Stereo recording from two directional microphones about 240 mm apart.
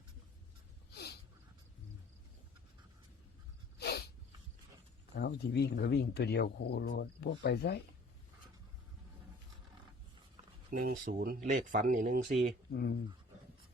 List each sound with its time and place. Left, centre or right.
3.8 s snort: left
5.1 s speech: left
10.7 s speech: right